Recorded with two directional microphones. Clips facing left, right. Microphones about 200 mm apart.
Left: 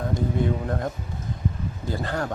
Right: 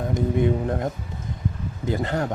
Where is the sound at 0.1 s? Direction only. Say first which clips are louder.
Right 4 dB; 20° right (ahead or behind).